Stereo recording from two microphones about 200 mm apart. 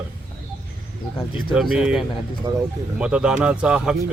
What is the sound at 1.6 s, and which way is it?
Speech, 5° right (ahead or behind).